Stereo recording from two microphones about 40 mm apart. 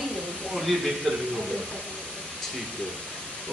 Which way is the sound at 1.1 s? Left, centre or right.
Centre.